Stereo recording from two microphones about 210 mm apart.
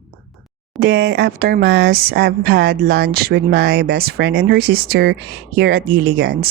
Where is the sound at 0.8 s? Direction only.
50° right (ahead or behind).